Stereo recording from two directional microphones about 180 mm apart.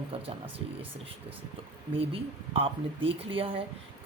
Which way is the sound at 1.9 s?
30° right (ahead or behind).